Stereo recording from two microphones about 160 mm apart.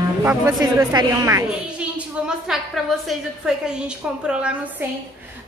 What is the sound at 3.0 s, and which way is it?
Speech, 5° right (ahead or behind).